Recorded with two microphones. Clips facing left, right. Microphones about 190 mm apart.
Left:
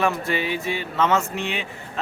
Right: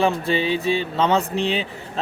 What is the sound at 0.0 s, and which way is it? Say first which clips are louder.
Speech: right 3 dB; 30° right (ahead or behind).